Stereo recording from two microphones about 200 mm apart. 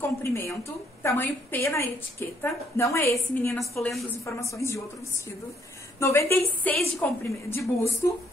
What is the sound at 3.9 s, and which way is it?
Speech, centre (ahead or behind).